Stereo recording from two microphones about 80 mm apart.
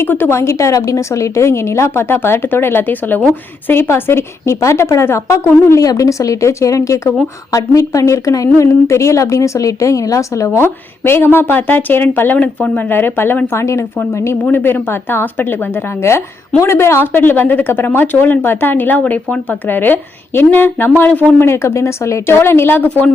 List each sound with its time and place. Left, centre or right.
0.0 s a woman's voice: left